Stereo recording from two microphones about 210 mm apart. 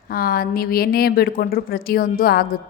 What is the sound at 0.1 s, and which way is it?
A woman's voice, 45° left (ahead or behind).